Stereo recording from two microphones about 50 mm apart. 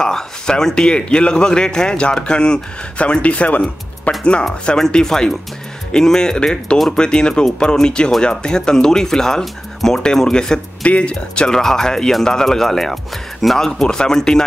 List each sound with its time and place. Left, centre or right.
0.0 s speech: centre
10.8 s speech: left; by 13.7 s centre
13.7 s speech: centre